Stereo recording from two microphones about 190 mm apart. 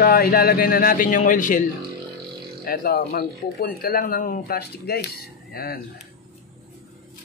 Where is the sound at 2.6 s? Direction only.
50° left (ahead or behind).